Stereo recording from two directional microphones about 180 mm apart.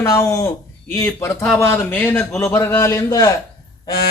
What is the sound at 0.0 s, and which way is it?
A man's voice, 15° left (ahead or behind).